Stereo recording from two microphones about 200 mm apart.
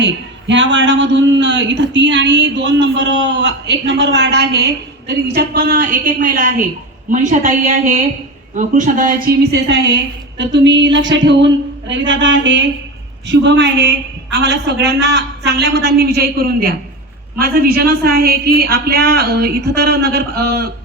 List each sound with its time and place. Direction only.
0.0 s a man's voice: 65° right (ahead or behind); by 9.1 s 40° right (ahead or behind)
9.2 s a man's voice: 60° right (ahead or behind)